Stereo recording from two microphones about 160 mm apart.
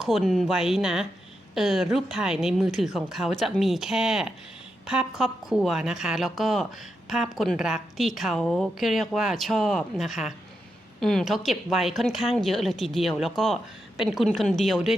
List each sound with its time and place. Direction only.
0.0 s a woman's voice: centre (ahead or behind)